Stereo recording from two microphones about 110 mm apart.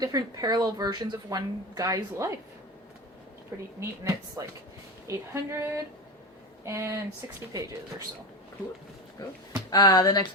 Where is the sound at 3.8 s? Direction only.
25° right (ahead or behind).